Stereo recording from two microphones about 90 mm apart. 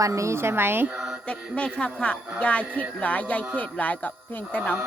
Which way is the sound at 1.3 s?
10° left (ahead or behind).